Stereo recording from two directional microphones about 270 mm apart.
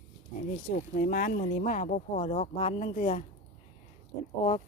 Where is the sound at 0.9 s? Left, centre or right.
Left.